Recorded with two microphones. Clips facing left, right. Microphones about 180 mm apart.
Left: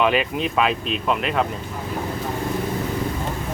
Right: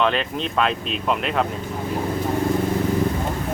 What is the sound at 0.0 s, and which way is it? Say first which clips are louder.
Speech: left 2 dB; 10° left (ahead or behind).